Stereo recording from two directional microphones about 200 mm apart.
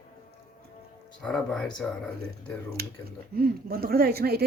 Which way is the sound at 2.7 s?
50° right (ahead or behind).